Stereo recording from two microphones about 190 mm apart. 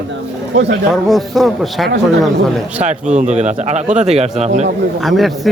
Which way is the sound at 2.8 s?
40° right (ahead or behind).